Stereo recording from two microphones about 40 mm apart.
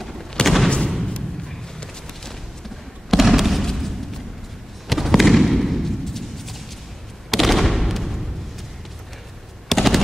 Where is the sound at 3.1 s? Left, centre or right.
Centre.